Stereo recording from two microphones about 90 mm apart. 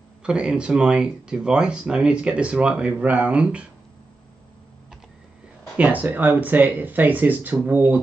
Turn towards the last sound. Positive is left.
turn(degrees=-20)  # may be behind; listen again after turning